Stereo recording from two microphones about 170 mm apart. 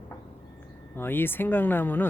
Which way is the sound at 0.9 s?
10° left (ahead or behind).